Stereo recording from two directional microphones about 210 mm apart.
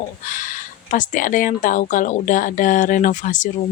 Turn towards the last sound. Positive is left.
turn(degrees=35)  # may be behind; listen again after turning